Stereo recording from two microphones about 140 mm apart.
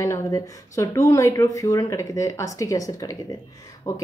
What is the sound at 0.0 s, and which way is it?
Speech, 20° left (ahead or behind).